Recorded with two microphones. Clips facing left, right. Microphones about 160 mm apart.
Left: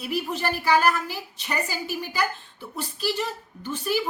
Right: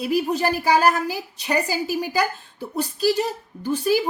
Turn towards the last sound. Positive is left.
turn(degrees=-40)  # may be behind; listen again after turning